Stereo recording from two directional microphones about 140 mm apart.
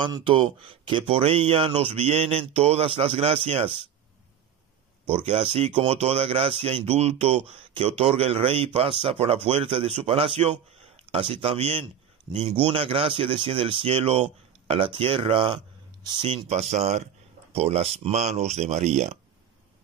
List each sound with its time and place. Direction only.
0.0 s speech: 35° right (ahead or behind)
5.0 s speech: 40° right (ahead or behind)
16.7 s speech: 55° right (ahead or behind)